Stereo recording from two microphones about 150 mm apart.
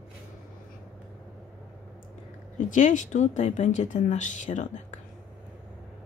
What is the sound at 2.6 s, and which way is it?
Speech, 60° left (ahead or behind).